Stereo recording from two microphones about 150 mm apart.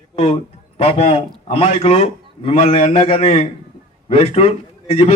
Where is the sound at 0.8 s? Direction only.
45° left (ahead or behind).